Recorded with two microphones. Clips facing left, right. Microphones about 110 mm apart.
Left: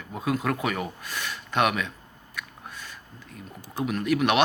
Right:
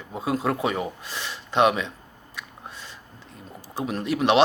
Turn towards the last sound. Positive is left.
turn(degrees=-30)  # may be behind; listen again after turning